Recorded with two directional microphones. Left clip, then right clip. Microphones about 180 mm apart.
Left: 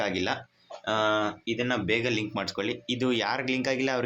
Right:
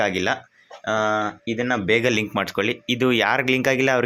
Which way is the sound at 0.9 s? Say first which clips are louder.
Right 4 dB; 25° right (ahead or behind).